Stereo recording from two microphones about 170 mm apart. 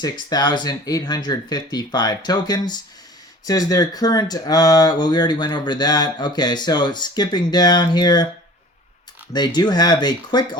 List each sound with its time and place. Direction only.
0.0 s speech: 25° left (ahead or behind)
9.3 s speech: 25° left (ahead or behind)